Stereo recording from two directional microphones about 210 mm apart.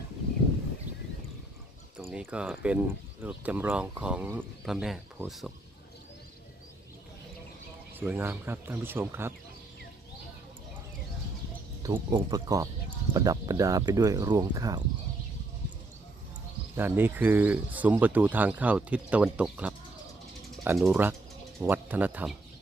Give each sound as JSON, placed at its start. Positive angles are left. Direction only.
{"t": 2.0, "sound": "speech", "side_deg": -5}
{"t": 7.9, "sound": "speech", "side_deg": -10}
{"t": 11.8, "sound": "speech", "side_deg": -15}
{"t": 16.7, "sound": "speech", "side_deg": -10}